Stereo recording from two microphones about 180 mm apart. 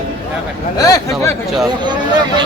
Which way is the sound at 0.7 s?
20° left (ahead or behind).